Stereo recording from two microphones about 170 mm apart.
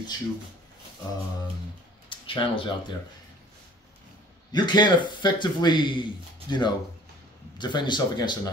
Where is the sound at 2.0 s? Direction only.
30° left (ahead or behind).